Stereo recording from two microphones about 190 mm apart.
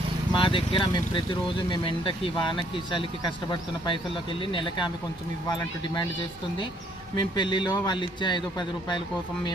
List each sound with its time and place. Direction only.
0.3 s speech: 25° left (ahead or behind)
7.3 s speech: 25° left (ahead or behind)